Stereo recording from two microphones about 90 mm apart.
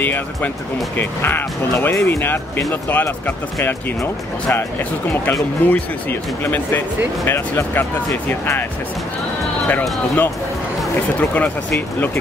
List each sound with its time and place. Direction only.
0.0 s speech: 20° left (ahead or behind)
4.6 s speech: 20° left (ahead or behind)
9.7 s speech: 20° left (ahead or behind)